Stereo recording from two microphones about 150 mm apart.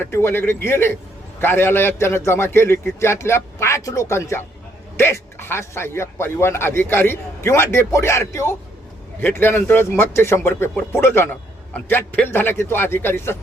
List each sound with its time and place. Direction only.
0.0 s speech: 15° left (ahead or behind)